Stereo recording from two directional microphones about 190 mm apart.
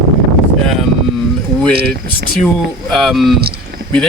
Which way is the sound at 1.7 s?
55° right (ahead or behind).